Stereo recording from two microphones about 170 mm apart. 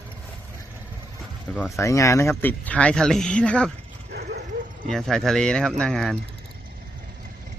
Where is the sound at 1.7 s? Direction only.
15° left (ahead or behind).